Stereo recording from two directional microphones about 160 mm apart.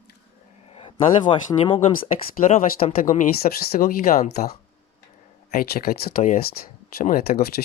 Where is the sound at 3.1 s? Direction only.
65° left (ahead or behind).